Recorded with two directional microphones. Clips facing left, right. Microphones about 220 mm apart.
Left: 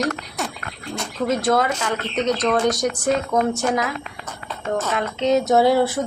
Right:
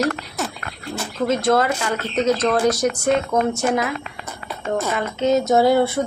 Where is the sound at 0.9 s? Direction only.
Centre (ahead or behind).